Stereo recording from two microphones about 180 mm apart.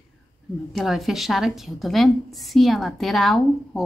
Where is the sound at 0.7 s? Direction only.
Centre (ahead or behind).